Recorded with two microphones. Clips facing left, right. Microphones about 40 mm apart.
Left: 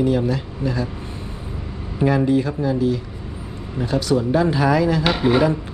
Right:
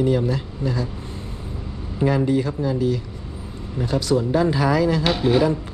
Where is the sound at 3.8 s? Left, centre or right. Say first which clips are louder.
Left 1 dB; left.